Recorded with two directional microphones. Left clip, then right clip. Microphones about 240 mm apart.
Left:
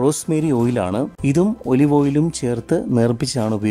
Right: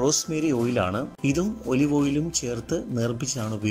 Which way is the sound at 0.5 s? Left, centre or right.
Centre.